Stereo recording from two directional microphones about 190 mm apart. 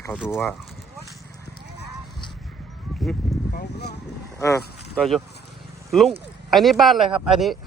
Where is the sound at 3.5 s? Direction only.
60° left (ahead or behind).